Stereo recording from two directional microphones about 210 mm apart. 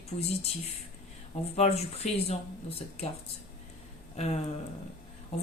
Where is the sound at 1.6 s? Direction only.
30° left (ahead or behind).